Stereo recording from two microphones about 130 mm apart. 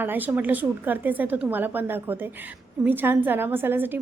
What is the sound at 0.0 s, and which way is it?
A woman's voice, 15° right (ahead or behind).